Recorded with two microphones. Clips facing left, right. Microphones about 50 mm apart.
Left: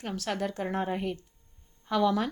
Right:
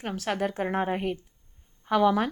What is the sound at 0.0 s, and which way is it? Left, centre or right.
Speech, right.